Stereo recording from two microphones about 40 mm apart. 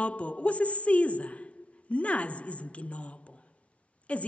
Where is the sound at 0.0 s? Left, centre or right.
Left.